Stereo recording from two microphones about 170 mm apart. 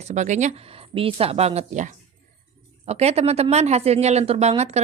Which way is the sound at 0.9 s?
35° right (ahead or behind).